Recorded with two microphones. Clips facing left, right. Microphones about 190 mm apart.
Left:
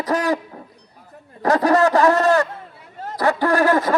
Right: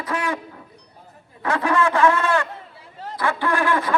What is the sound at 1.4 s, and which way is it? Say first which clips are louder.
A man's voice: left 5 dB; 40° left (ahead or behind).